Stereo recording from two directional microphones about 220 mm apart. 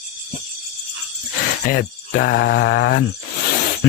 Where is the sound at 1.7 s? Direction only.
50° left (ahead or behind).